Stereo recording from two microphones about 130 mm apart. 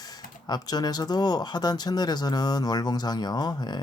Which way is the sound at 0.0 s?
30° left (ahead or behind).